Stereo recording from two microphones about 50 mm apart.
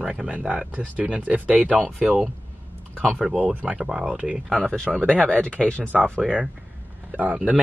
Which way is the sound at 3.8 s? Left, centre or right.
Centre.